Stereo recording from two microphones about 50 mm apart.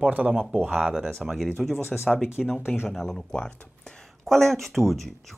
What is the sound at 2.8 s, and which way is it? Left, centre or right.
Speech, centre.